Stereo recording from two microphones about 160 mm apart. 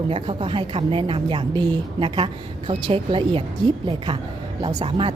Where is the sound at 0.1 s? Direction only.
30° right (ahead or behind).